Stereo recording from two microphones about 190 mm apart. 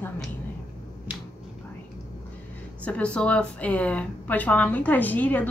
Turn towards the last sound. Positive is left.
turn(degrees=10)  # may be behind; listen again after turning